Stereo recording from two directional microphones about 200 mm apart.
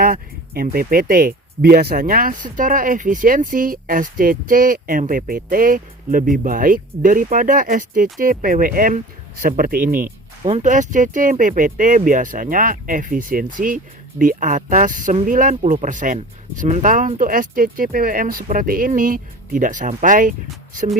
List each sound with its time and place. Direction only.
0.0 s speech: 45° right (ahead or behind)
10.4 s speech: 35° right (ahead or behind)